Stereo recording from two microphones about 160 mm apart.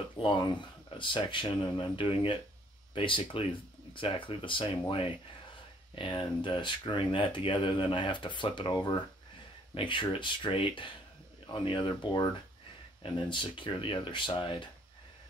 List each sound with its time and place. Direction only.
0.2 s speech: 30° left (ahead or behind)